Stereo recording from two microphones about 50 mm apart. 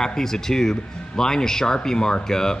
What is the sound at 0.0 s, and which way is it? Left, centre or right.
Speech, centre.